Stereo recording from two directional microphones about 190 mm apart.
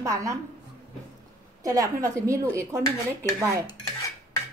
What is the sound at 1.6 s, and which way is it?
A woman's voice, 15° right (ahead or behind).